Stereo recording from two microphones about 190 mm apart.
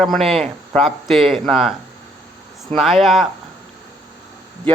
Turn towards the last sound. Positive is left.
turn(degrees=0)  # may be behind; listen again after turning